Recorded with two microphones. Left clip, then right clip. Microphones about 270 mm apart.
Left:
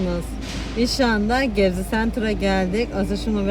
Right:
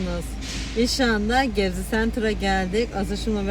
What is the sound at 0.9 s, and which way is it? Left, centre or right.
Speech, centre.